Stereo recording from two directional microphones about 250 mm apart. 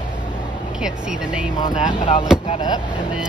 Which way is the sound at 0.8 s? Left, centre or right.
Centre.